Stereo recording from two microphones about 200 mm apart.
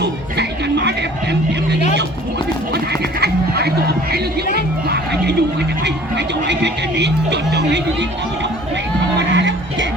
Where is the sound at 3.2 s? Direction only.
55° right (ahead or behind).